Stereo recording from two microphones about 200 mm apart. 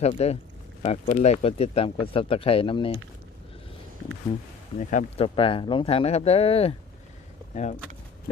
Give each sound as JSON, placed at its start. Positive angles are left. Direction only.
{"t": 0.0, "sound": "speech", "side_deg": 30}
{"t": 4.8, "sound": "speech", "side_deg": 40}